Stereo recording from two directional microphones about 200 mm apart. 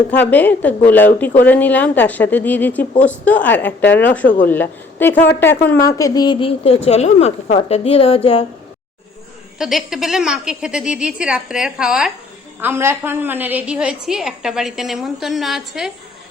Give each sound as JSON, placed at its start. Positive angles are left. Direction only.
{"t": 0.1, "sound": "a woman's voice", "side_deg": 10}
{"t": 9.6, "sound": "a woman's voice", "side_deg": 0}